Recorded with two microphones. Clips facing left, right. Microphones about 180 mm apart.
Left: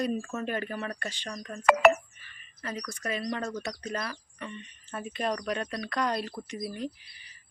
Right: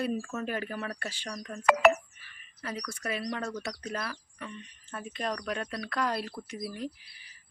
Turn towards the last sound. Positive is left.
turn(degrees=-5)  # may be behind; listen again after turning